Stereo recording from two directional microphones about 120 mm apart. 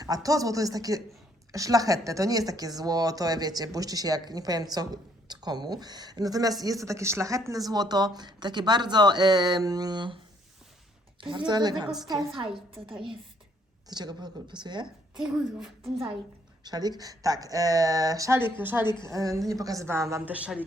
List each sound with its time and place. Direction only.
0.0 s a woman's voice: 30° right (ahead or behind)
11.2 s speech: 45° right (ahead or behind)
12.3 s a woman's voice: 50° right (ahead or behind)
13.8 s speech: 35° right (ahead or behind)
15.1 s speech: 5° right (ahead or behind)
16.6 s a woman's voice: 35° right (ahead or behind)
20.2 s a woman's voice: 10° right (ahead or behind)